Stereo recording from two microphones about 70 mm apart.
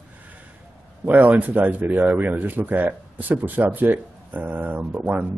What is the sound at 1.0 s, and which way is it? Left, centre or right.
Speech, right.